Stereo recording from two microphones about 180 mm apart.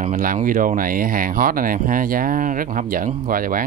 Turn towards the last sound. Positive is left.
turn(degrees=-50)  # may be behind; listen again after turning